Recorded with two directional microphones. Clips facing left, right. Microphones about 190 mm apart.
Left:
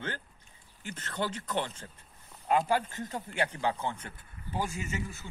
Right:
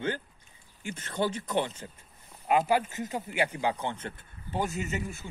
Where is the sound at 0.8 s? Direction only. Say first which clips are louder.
Right 4 dB; 10° right (ahead or behind).